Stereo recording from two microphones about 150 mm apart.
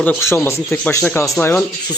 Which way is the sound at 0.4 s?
15° left (ahead or behind).